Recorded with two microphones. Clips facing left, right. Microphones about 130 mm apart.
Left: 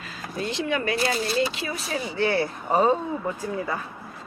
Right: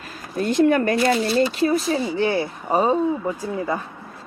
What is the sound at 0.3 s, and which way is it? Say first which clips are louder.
Speech: right 9 dB; 50° right (ahead or behind).